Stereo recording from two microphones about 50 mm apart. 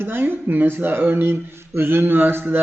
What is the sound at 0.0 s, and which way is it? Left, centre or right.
Speech, right.